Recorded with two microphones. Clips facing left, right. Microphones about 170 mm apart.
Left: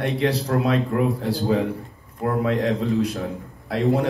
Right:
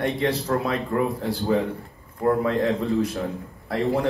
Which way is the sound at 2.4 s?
70° left (ahead or behind).